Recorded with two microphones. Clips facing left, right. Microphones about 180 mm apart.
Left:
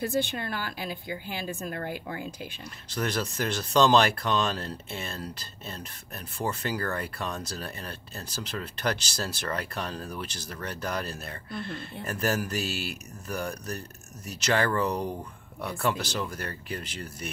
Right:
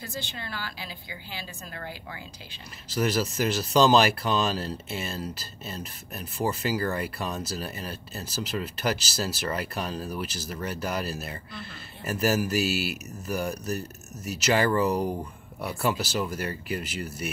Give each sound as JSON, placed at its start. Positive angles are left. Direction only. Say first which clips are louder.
{"t": 0.0, "sound": "a woman's voice", "louder": "left 9 dB", "side_deg": 55}
{"t": 2.9, "sound": "speech", "louder": "right 4 dB", "side_deg": -5}